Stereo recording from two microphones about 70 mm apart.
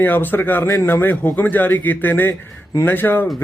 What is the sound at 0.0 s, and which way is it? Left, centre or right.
A man's voice, left.